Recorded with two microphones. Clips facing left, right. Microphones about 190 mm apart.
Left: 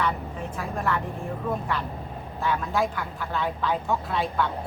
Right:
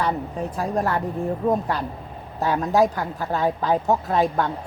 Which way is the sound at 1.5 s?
40° right (ahead or behind).